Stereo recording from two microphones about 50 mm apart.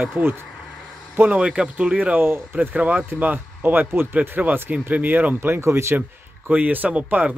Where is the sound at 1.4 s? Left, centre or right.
Right.